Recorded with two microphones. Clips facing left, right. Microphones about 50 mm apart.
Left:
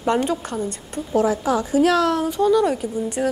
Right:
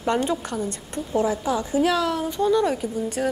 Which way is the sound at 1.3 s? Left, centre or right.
Left.